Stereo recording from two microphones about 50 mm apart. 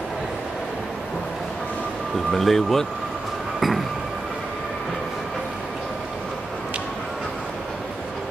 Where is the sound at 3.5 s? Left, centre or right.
Centre.